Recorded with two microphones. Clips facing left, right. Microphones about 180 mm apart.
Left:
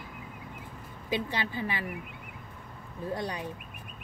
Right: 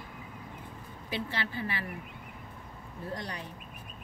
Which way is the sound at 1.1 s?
15° left (ahead or behind).